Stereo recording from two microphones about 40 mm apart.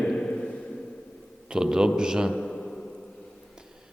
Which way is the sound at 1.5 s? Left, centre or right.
Centre.